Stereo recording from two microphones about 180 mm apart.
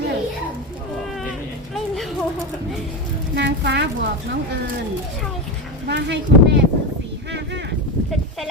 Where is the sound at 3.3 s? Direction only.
70° right (ahead or behind).